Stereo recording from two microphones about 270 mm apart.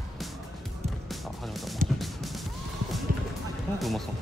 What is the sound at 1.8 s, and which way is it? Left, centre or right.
Music, right.